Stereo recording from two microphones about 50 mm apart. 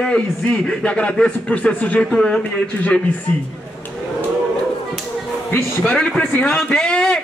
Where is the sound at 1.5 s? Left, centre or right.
Left.